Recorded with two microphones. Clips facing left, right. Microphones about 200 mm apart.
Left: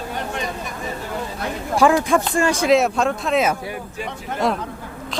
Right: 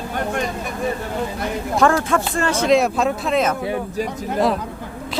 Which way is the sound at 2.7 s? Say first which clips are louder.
Right 2 dB; centre (ahead or behind).